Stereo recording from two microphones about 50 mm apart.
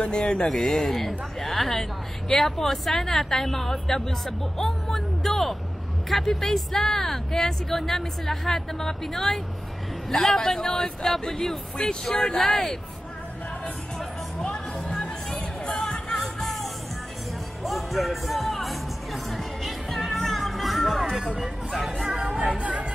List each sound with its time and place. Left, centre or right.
0.0 s speech: centre
4.6 s vehicle: centre
6.0 s speech: centre
14.4 s music: centre
16.1 s music: centre
20.0 s music: centre
21.7 s speech: centre
22.2 s music: right